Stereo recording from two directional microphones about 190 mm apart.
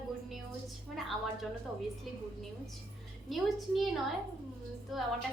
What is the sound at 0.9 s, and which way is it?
Speech, centre (ahead or behind).